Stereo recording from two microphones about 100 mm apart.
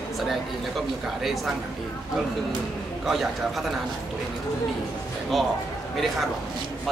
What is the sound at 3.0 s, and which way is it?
Speech, centre (ahead or behind).